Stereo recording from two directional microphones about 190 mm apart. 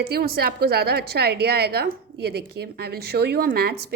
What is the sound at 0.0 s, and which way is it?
A woman's voice, 50° right (ahead or behind).